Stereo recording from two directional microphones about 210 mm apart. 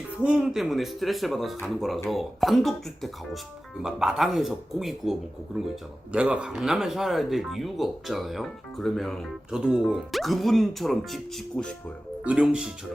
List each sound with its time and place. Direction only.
0.2 s speech: 5° right (ahead or behind)